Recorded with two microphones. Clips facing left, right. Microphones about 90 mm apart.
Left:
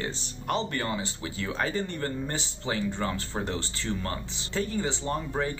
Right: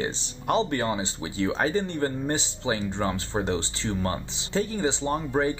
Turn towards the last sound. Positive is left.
turn(degrees=-15)  # may be behind; listen again after turning